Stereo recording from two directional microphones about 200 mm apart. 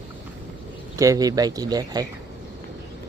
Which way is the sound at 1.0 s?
15° right (ahead or behind).